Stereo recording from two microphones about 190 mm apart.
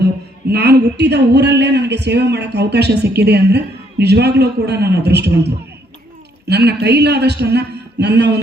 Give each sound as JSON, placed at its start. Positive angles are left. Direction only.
{"t": 0.4, "sound": "speech", "side_deg": -60}
{"t": 6.5, "sound": "speech", "side_deg": -60}